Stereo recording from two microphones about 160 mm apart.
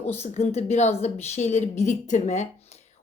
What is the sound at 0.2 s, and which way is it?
Speech, 45° left (ahead or behind).